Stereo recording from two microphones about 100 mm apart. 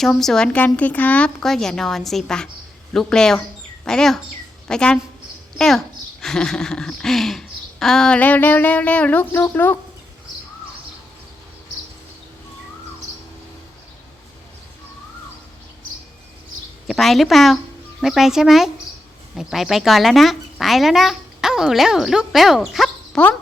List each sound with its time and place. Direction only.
0.0 s a child's voice: 5° left (ahead or behind)
4.7 s a sound: 10° left (ahead or behind)
5.5 s speech: 5° left (ahead or behind)
6.2 s a sound: 5° left (ahead or behind)
9.4 s speech: 20° left (ahead or behind)
16.8 s a child's voice: centre (ahead or behind)